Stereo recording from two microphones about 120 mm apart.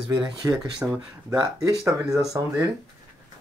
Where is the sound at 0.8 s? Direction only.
5° right (ahead or behind).